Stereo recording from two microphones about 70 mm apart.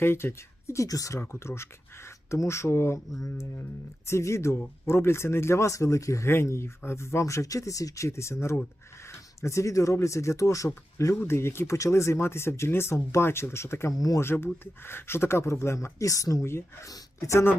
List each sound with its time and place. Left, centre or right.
0.0 s speech: left
0.9 s speech: left
1.2 s speech: left
3.1 s speech: left
3.6 s speech: left
11.1 s speech: left
16.4 s speech: left